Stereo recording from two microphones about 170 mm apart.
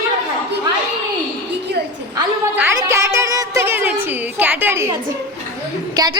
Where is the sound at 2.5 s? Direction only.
15° right (ahead or behind).